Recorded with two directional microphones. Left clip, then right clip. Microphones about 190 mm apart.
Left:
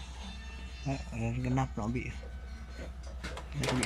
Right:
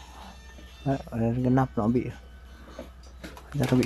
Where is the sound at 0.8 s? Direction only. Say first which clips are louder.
Right 10 dB; 25° right (ahead or behind).